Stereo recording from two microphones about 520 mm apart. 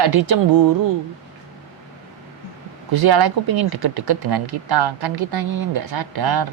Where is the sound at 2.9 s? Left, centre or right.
Right.